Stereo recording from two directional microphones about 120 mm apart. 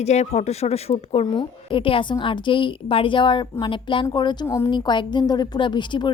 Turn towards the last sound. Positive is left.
turn(degrees=40)  # may be behind; listen again after turning